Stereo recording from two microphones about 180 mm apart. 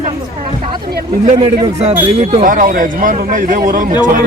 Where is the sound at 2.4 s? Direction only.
50° right (ahead or behind).